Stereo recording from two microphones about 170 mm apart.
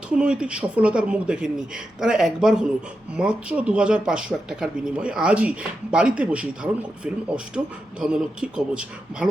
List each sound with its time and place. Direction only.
0.1 s speech: 5° right (ahead or behind)